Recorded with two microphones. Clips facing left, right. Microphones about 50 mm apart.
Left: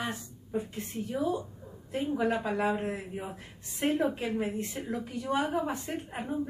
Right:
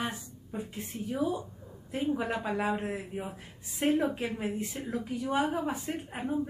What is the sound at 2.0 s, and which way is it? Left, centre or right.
Speech, centre.